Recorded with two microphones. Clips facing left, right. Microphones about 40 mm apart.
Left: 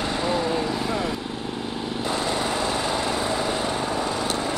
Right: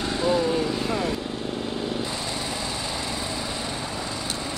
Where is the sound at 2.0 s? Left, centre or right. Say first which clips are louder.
Left 6 dB; left.